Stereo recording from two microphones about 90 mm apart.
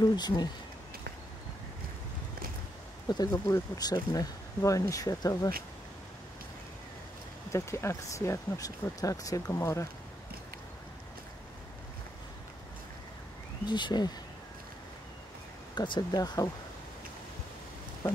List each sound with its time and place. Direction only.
0.0 s speech: 50° left (ahead or behind)
3.1 s speech: 50° left (ahead or behind)
7.5 s speech: 30° left (ahead or behind)
13.7 s speech: 55° left (ahead or behind)
15.7 s speech: 55° left (ahead or behind)